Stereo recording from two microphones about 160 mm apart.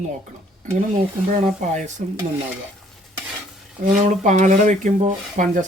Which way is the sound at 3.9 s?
50° right (ahead or behind).